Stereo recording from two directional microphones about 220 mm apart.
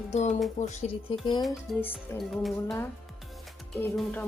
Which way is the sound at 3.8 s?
5° left (ahead or behind).